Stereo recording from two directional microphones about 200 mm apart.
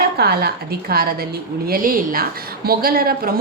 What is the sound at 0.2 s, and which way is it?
A woman's voice, 55° right (ahead or behind).